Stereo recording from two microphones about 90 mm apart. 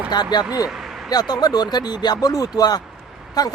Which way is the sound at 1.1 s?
45° left (ahead or behind).